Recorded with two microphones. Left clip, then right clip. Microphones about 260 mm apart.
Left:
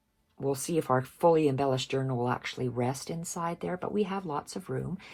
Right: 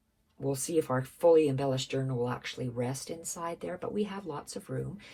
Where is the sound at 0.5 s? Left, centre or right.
Left.